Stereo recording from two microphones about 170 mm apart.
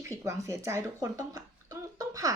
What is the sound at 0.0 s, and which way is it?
A woman's voice, 20° right (ahead or behind).